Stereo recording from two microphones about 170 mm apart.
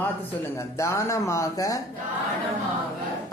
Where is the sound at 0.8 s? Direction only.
15° left (ahead or behind).